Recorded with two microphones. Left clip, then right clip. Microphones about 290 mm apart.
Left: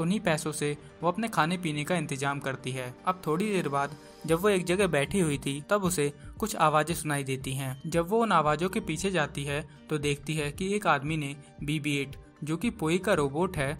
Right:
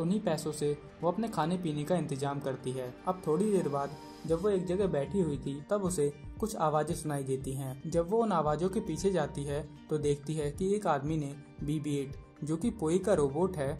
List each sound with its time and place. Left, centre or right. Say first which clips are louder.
0.0 s speech: left 4 dB; left